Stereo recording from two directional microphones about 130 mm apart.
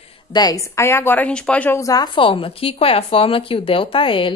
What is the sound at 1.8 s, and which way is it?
Speech, 25° left (ahead or behind).